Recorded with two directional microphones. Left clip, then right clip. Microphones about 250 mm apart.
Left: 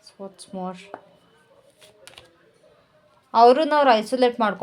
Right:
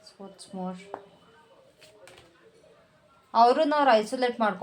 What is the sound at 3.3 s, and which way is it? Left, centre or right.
Speech, left.